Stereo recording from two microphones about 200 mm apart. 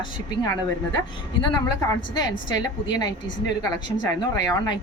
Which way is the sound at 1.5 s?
20° left (ahead or behind).